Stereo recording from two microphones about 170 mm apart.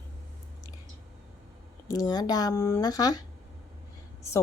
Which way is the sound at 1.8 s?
20° left (ahead or behind).